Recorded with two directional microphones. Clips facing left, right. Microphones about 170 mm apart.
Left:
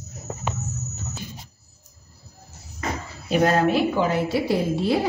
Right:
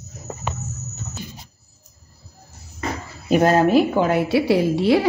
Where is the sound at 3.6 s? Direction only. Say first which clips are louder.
Right 4 dB; 45° right (ahead or behind).